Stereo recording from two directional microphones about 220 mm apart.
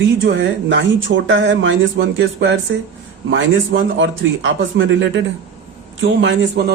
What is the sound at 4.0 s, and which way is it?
Speech, 60° right (ahead or behind).